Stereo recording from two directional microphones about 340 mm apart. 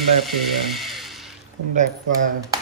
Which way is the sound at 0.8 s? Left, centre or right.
Centre.